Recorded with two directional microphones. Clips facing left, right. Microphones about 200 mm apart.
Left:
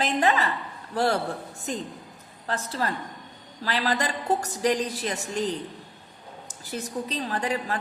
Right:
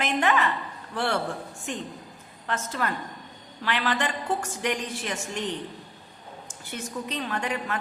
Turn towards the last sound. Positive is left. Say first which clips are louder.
# left 2 dB
turn(degrees=35)  # may be behind; listen again after turning